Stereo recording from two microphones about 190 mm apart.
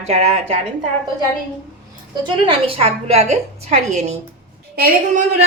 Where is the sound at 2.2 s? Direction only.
25° right (ahead or behind).